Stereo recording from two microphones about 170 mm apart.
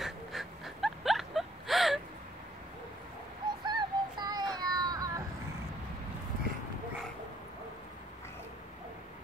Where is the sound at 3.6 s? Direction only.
25° right (ahead or behind).